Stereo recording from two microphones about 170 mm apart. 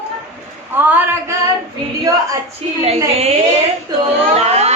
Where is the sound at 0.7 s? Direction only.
10° right (ahead or behind).